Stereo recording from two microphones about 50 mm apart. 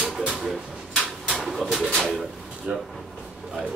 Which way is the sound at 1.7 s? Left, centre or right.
Centre.